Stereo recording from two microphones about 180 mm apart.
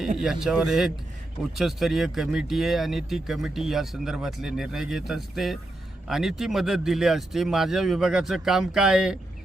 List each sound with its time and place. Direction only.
0.2 s speech: centre (ahead or behind)